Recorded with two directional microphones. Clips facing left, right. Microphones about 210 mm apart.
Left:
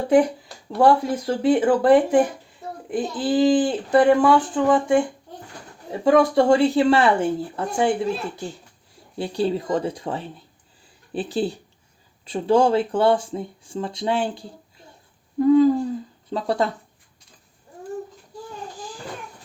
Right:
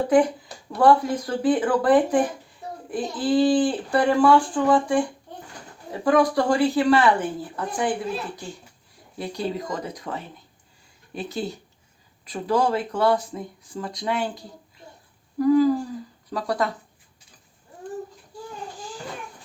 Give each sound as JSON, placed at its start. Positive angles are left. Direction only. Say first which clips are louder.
{"t": 0.8, "sound": "speech", "louder": "left 1 dB", "side_deg": 25}
{"t": 6.1, "sound": "speech", "louder": "left 4 dB", "side_deg": 25}
{"t": 9.1, "sound": "speech", "louder": "left 5 dB", "side_deg": 30}
{"t": 15.4, "sound": "a sound", "louder": "left 3 dB", "side_deg": 25}
{"t": 16.3, "sound": "speech", "louder": "left 3 dB", "side_deg": 25}